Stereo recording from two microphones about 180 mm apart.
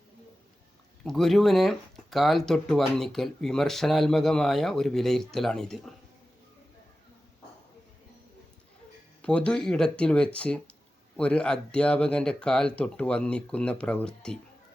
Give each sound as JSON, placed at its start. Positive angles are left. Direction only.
{"t": 1.0, "sound": "speech", "side_deg": 0}
{"t": 9.2, "sound": "speech", "side_deg": 5}